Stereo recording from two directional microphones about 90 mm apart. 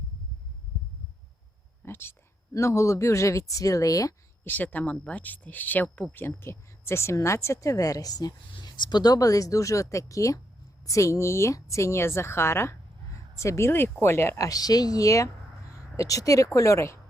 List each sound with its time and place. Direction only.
1.8 s speech: 25° left (ahead or behind)
4.4 s speech: 20° left (ahead or behind); by 8.4 s 45° left (ahead or behind)
8.5 s speech: 60° left (ahead or behind); by 17.0 s 35° left (ahead or behind)